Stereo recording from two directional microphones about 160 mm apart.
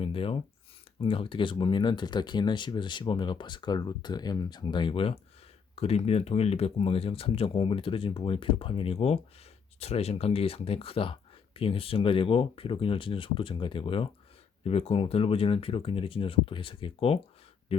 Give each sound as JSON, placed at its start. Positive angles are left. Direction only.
{"t": 0.0, "sound": "speech", "side_deg": 35}